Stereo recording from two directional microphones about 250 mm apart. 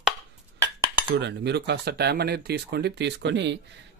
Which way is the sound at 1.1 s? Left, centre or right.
Right.